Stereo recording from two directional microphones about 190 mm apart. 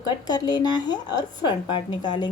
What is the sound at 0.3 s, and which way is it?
Speech, 20° left (ahead or behind).